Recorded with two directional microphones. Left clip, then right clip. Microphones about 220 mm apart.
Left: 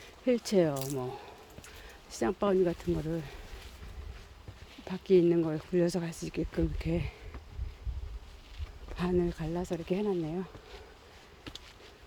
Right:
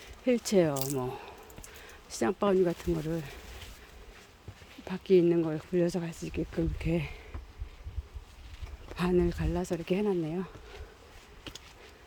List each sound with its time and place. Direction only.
0.3 s speech: 5° right (ahead or behind)
0.9 s speech: 15° right (ahead or behind)
4.9 s speech: 10° right (ahead or behind)
9.0 s speech: 15° right (ahead or behind)